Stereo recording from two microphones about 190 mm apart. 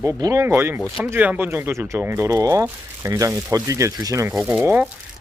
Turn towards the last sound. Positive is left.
turn(degrees=-10)  # may be behind; listen again after turning